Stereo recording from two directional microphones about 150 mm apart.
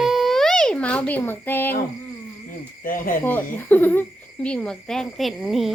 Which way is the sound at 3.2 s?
15° left (ahead or behind).